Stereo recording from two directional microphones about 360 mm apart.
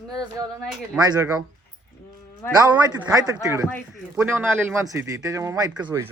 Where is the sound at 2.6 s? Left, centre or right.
Centre.